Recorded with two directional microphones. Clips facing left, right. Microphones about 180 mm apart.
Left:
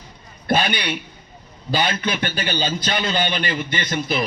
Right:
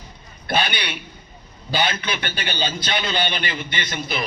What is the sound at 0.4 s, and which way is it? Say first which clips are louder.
A man's voice: left 3 dB; 40° left (ahead or behind).